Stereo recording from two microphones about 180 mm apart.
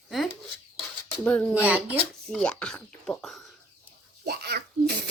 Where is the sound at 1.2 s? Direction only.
5° left (ahead or behind).